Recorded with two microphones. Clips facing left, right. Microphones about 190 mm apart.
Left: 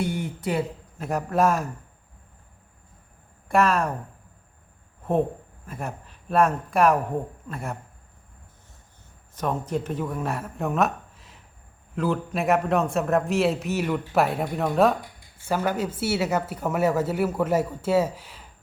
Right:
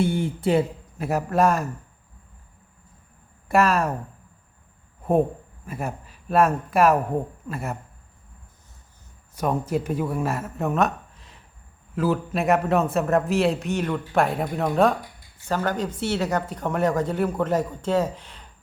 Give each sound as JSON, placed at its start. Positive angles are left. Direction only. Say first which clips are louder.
{"t": 0.0, "sound": "speech", "louder": "right 5 dB", "side_deg": -30}
{"t": 0.9, "sound": "a man's voice", "louder": "right 2 dB", "side_deg": -5}
{"t": 3.5, "sound": "a man's voice", "louder": "right 1 dB", "side_deg": 0}
{"t": 5.6, "sound": "a man's voice", "louder": "right 3 dB", "side_deg": -10}
{"t": 9.3, "sound": "a man's voice", "louder": "right 3 dB", "side_deg": -10}